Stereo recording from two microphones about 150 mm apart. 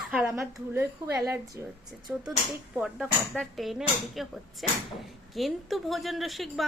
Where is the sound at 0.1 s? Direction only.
10° right (ahead or behind).